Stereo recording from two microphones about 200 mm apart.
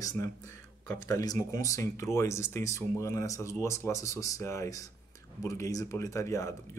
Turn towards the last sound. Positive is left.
turn(degrees=15)  # may be behind; listen again after turning